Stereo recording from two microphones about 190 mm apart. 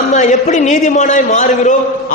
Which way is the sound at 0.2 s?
40° left (ahead or behind).